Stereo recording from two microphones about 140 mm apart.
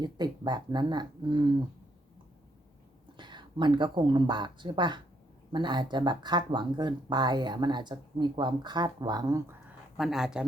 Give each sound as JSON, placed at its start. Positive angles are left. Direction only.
{"t": 0.0, "sound": "speech", "side_deg": -30}
{"t": 3.2, "sound": "speech", "side_deg": -35}
{"t": 10.0, "sound": "speech", "side_deg": 0}